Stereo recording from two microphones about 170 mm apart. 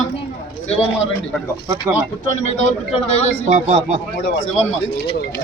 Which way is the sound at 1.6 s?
15° right (ahead or behind).